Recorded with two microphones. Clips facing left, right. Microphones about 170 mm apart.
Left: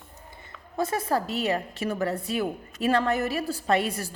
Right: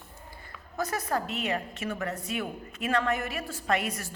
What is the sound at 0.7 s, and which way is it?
A woman's voice, 25° left (ahead or behind).